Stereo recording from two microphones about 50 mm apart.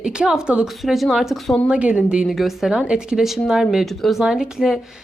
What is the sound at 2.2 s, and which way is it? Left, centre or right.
Speech, centre.